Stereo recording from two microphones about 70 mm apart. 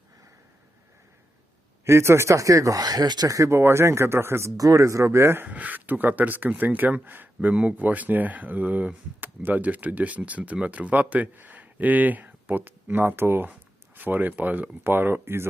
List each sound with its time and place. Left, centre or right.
1.8 s speech: right
3.5 s speech: right
4.5 s speech: right
5.5 s speech: right